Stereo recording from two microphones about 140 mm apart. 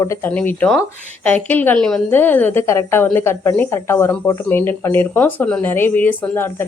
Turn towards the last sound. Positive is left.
turn(degrees=15)  # may be behind; listen again after turning